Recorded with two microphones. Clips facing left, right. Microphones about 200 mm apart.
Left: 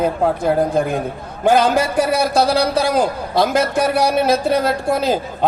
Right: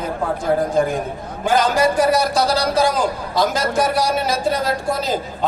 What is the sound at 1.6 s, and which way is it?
A man's voice, 55° left (ahead or behind).